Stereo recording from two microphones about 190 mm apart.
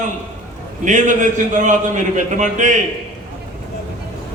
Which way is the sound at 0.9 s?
40° right (ahead or behind).